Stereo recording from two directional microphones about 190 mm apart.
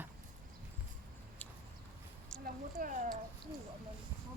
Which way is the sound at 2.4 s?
50° right (ahead or behind).